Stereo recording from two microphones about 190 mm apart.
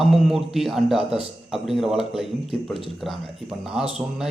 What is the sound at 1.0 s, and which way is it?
Speech, 30° right (ahead or behind).